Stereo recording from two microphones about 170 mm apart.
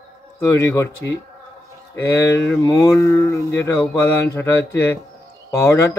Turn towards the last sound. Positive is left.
turn(degrees=15)  # may be behind; listen again after turning